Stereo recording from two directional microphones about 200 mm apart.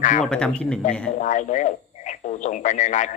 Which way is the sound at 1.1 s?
40° left (ahead or behind).